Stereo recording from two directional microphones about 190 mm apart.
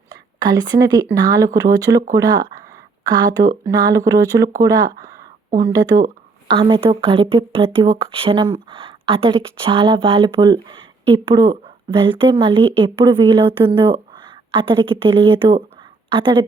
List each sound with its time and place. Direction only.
0.1 s a woman's voice: 20° right (ahead or behind)
12.0 s speech: 25° right (ahead or behind)